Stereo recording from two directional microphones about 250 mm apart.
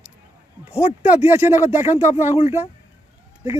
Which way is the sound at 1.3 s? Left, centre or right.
Centre.